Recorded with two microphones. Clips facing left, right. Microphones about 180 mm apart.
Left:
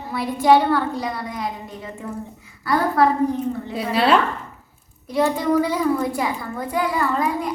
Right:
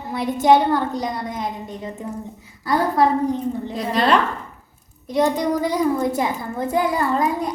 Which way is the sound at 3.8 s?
5° left (ahead or behind).